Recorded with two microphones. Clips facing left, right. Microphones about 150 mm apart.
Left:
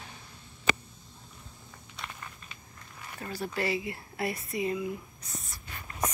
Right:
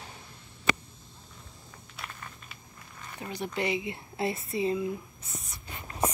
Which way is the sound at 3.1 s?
20° right (ahead or behind).